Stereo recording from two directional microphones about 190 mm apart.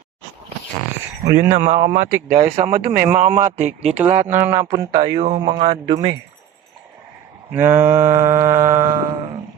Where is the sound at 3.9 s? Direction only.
10° right (ahead or behind); by 5.9 s 25° right (ahead or behind).